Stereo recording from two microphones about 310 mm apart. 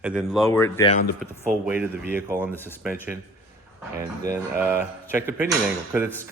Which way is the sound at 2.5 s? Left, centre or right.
Centre.